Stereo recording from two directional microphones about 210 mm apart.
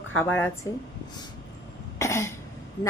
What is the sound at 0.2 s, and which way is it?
Speech, 10° left (ahead or behind).